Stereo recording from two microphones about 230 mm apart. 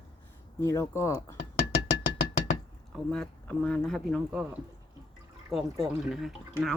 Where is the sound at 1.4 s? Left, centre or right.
Left.